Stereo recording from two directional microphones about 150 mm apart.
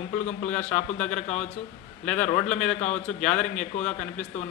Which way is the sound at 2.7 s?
50° left (ahead or behind).